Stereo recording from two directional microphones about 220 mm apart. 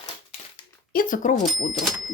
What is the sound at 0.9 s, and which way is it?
Speech, 40° left (ahead or behind).